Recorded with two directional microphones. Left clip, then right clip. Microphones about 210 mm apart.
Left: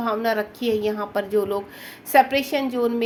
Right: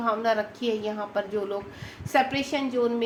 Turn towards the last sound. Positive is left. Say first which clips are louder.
# left 3 dB
turn(degrees=55)  # may be behind; listen again after turning